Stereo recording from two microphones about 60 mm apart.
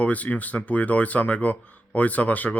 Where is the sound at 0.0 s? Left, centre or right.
Left.